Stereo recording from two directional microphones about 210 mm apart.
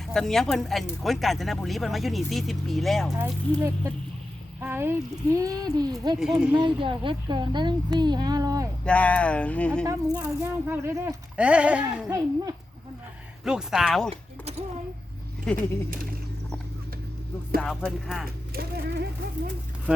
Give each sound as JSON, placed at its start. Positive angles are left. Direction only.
{"t": 0.1, "sound": "speech", "side_deg": 0}
{"t": 4.6, "sound": "speech", "side_deg": -10}
{"t": 6.1, "sound": "speech", "side_deg": -5}
{"t": 6.5, "sound": "speech", "side_deg": -20}
{"t": 7.9, "sound": "music", "side_deg": -20}
{"t": 8.8, "sound": "speech", "side_deg": 5}
{"t": 10.2, "sound": "speech", "side_deg": -10}
{"t": 13.4, "sound": "speech", "side_deg": 0}
{"t": 14.1, "sound": "a sound", "side_deg": -30}
{"t": 15.5, "sound": "speech", "side_deg": 5}
{"t": 17.6, "sound": "speech", "side_deg": 0}
{"t": 18.5, "sound": "speech", "side_deg": -45}